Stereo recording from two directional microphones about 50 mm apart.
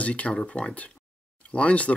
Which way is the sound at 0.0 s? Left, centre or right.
Left.